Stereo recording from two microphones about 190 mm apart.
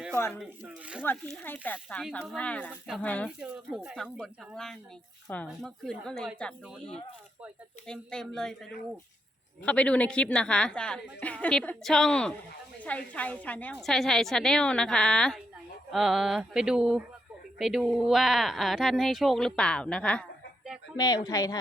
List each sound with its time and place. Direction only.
0.6 s speech: 5° right (ahead or behind)
1.0 s speech: 10° left (ahead or behind)
3.4 s a woman's voice: 5° right (ahead or behind)
9.6 s a woman's voice: 5° left (ahead or behind)
20.9 s speech: 20° left (ahead or behind)